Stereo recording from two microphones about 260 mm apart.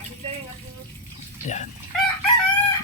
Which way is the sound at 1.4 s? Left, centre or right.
Left.